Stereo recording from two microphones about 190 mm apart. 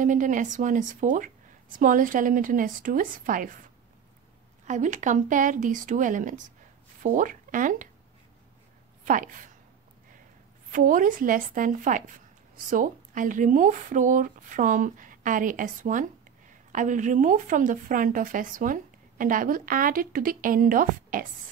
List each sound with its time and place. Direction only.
0.0 s speech: 40° right (ahead or behind)
4.6 s speech: 40° right (ahead or behind)
9.0 s speech: 45° right (ahead or behind)
10.7 s speech: 45° right (ahead or behind)